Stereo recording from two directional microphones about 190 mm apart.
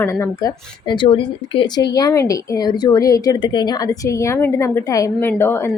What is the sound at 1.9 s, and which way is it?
Speech, 15° left (ahead or behind).